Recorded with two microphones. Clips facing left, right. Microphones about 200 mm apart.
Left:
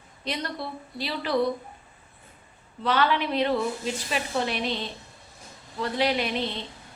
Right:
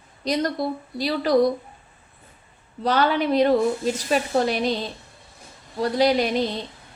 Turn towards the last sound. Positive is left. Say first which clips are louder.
# right 6 dB
turn(degrees=-40)  # may be behind; listen again after turning